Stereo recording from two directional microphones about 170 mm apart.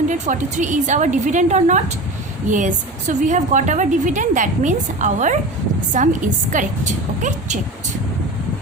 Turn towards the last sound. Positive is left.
turn(degrees=-45)  # may be behind; listen again after turning